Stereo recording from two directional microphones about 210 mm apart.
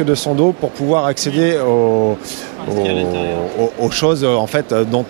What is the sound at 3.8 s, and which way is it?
Speech, 25° right (ahead or behind).